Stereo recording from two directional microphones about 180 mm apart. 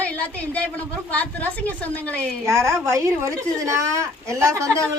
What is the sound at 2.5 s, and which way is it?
A woman's voice, 15° right (ahead or behind).